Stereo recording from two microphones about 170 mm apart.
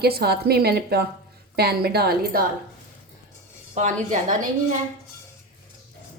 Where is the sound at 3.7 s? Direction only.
45° right (ahead or behind).